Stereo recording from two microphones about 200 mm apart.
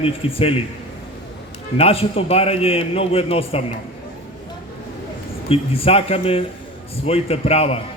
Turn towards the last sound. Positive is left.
turn(degrees=30)  # may be behind; listen again after turning